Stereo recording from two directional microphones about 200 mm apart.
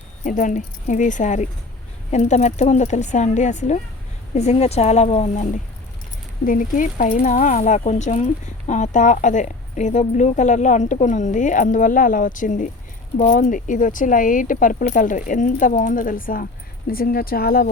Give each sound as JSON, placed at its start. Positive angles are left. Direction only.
{"t": 0.3, "sound": "speech", "side_deg": 40}